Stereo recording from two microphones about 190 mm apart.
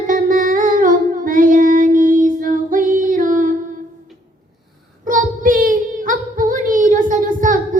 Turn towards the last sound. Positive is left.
turn(degrees=-45)  # may be behind; listen again after turning